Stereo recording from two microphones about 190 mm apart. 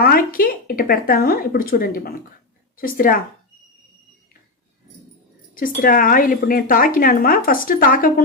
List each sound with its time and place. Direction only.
0.0 s a woman's voice: 50° left (ahead or behind)
5.5 s a woman's voice: 50° left (ahead or behind)